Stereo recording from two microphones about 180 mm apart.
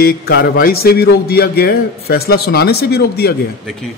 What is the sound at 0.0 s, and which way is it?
Speech, 60° left (ahead or behind).